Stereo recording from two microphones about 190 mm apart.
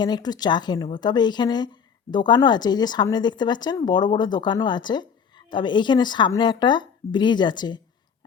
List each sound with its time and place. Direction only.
0.0 s speech: 20° left (ahead or behind)